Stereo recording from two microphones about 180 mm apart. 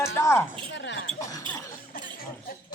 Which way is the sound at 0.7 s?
80° left.